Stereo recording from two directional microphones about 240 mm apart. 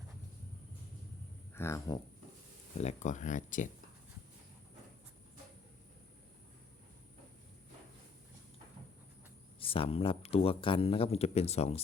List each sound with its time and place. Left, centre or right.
1.5 s speech: centre
2.7 s speech: left
9.6 s speech: left